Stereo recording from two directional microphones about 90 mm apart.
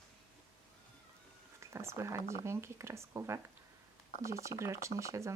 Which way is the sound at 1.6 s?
30° right (ahead or behind).